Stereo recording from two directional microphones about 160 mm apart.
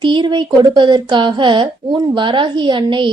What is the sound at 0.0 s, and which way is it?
A woman's voice, 30° right (ahead or behind).